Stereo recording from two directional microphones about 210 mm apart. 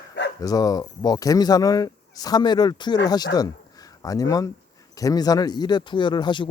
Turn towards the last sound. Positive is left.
turn(degrees=20)  # may be behind; listen again after turning